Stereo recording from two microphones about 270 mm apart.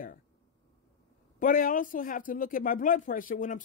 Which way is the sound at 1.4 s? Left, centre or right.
Left.